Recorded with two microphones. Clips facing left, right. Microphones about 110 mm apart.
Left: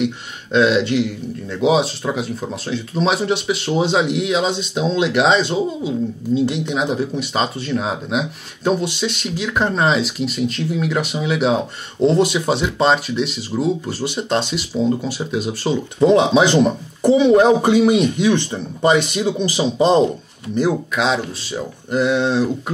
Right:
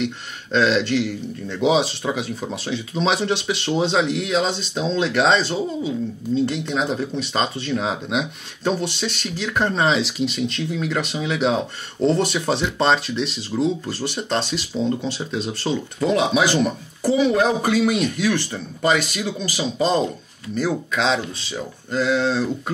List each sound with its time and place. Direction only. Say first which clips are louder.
0.0 s speech: left 4 dB; 10° left (ahead or behind)
1.5 s speech: left 2 dB; centre (ahead or behind)
16.0 s speech: left 6 dB; 20° left (ahead or behind)
20.9 s speech: left 2 dB; 5° left (ahead or behind)
21.5 s speech: left 4 dB; 20° left (ahead or behind)